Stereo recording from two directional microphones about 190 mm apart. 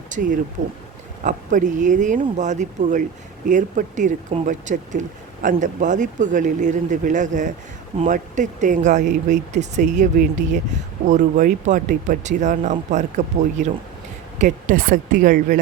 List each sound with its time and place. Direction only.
0.1 s speech: 45° right (ahead or behind)
0.6 s speech: 75° right (ahead or behind)
1.2 s a woman's voice: 45° right (ahead or behind)